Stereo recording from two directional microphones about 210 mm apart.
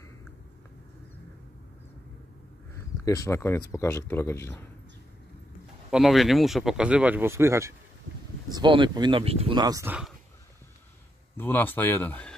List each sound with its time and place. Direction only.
3.3 s speech: 10° left (ahead or behind)
5.9 s speech: centre (ahead or behind)
11.3 s speech: 10° left (ahead or behind)